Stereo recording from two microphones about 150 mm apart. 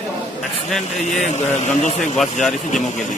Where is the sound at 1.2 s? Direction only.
50° left (ahead or behind).